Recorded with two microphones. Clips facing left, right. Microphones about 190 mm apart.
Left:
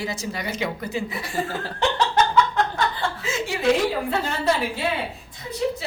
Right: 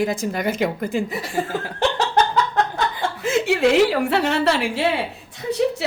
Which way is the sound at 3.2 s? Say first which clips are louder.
Right 8 dB; 60° right (ahead or behind).